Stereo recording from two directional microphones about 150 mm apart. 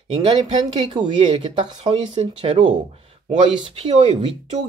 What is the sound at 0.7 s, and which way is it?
Speech, 35° right (ahead or behind).